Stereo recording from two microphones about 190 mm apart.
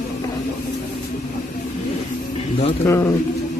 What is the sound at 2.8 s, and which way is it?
Speech, 15° left (ahead or behind).